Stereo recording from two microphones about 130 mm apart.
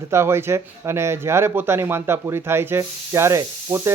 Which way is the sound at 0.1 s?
20° right (ahead or behind).